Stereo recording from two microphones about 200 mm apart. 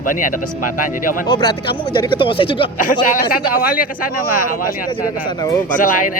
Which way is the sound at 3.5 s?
45° left (ahead or behind).